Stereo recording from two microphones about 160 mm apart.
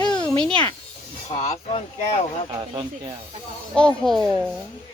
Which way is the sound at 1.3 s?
40° left (ahead or behind).